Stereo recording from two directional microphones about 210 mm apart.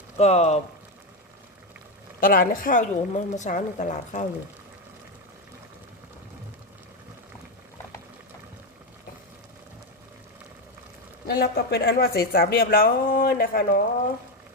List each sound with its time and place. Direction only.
0.2 s a woman's voice: 30° left (ahead or behind)
2.2 s a woman's voice: 40° left (ahead or behind)
11.3 s speech: 45° left (ahead or behind)